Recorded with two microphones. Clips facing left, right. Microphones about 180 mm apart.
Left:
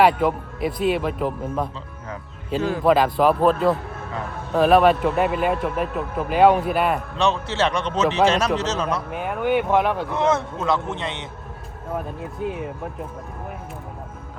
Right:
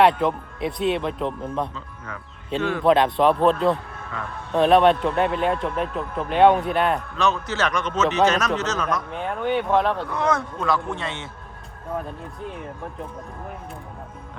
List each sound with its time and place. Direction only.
0.0 s speech: 5° left (ahead or behind)
2.6 s a man's voice: 35° left (ahead or behind)
2.8 s speech: 5° left (ahead or behind)
7.2 s a man's voice: 30° left (ahead or behind)
9.0 s speech: 5° left (ahead or behind)
10.1 s a man's voice: 25° left (ahead or behind)